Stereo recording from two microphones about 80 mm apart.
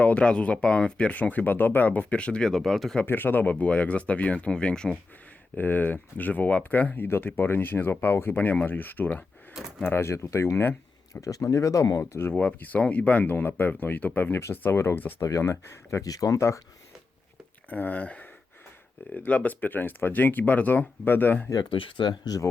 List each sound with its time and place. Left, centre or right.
0.0 s speech: centre
3.0 s speech: left
5.5 s speech: left
9.8 s speech: left
11.1 s speech: left
12.4 s speech: centre
15.2 s speech: left
17.7 s speech: left
21.5 s speech: left